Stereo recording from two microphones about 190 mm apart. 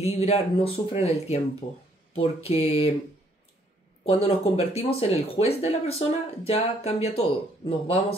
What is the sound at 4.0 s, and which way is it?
Speech, 30° left (ahead or behind).